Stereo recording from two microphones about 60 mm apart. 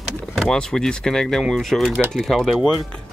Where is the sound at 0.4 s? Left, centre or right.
Centre.